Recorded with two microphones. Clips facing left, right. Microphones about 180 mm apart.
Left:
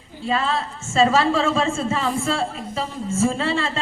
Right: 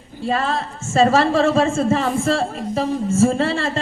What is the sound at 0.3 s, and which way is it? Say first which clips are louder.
A woman's voice: right 2 dB; 50° right (ahead or behind).